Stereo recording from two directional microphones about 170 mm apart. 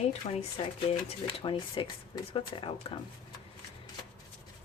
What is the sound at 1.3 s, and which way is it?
Speech, 30° left (ahead or behind).